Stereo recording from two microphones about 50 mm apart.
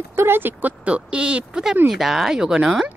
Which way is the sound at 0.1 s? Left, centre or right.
Right.